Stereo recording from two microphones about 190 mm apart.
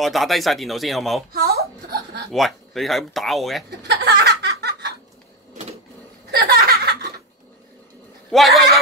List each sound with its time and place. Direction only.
0.0 s speech: centre (ahead or behind)
1.3 s a sound: 55° right (ahead or behind)
2.3 s speech: centre (ahead or behind)
3.8 s a sound: 65° right (ahead or behind)
6.3 s chuckle: 55° right (ahead or behind)
8.3 s speech: centre (ahead or behind)